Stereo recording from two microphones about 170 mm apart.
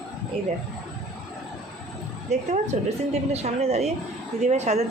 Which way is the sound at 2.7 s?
45° right (ahead or behind).